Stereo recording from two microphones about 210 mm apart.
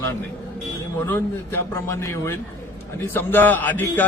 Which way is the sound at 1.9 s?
15° left (ahead or behind).